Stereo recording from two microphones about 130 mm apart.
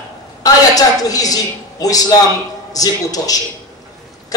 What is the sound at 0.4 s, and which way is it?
A woman's voice, 30° left (ahead or behind).